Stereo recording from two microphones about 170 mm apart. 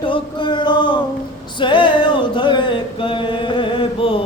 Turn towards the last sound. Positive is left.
turn(degrees=30)  # may be behind; listen again after turning